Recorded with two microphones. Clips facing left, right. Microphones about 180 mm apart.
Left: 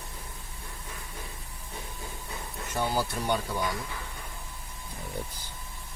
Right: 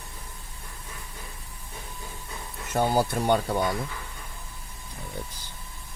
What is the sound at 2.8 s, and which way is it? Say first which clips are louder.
Speech: right 6 dB; 50° right (ahead or behind).